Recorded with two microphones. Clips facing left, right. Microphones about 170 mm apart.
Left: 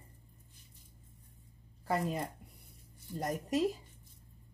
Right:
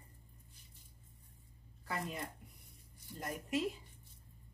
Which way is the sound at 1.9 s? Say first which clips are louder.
Left 8 dB; 35° left (ahead or behind).